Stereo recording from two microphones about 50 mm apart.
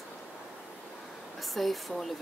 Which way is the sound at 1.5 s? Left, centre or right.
Centre.